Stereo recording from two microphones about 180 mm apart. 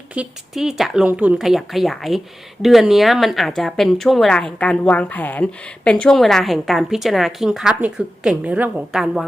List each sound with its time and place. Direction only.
0.1 s speech: 5° right (ahead or behind)